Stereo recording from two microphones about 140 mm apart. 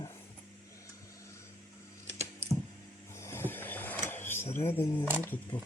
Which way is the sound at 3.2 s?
15° left (ahead or behind).